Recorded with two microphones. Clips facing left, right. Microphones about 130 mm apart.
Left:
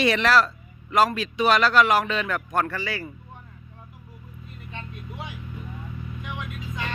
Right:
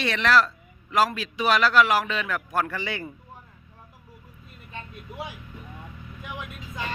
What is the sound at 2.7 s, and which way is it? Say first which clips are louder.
Speech: left 1 dB; 20° right (ahead or behind).